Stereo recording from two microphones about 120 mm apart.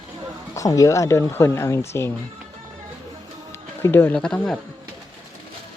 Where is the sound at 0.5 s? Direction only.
25° left (ahead or behind).